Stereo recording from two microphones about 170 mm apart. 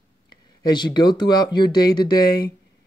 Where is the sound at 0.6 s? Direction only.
25° left (ahead or behind).